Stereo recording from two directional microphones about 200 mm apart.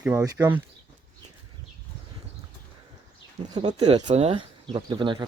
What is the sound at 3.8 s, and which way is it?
Speech, 30° right (ahead or behind).